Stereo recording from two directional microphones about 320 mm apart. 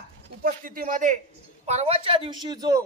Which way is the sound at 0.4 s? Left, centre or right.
Right.